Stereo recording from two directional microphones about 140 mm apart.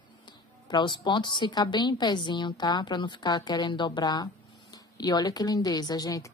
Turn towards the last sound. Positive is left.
turn(degrees=25)  # may be behind; listen again after turning